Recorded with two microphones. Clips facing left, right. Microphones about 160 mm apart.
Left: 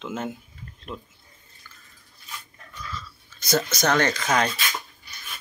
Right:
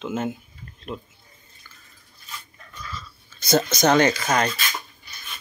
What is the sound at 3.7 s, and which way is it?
Speech, 20° right (ahead or behind).